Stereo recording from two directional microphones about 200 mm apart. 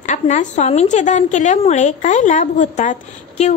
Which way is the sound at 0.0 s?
35° left (ahead or behind).